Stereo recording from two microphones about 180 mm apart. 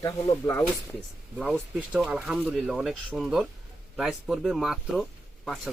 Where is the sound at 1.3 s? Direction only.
5° right (ahead or behind).